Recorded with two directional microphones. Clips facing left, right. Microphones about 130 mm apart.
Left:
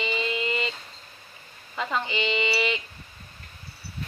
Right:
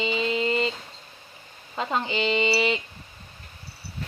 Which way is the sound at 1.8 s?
30° right (ahead or behind).